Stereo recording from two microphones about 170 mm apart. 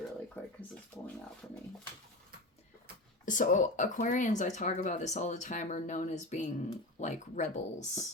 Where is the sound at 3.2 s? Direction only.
50° left (ahead or behind).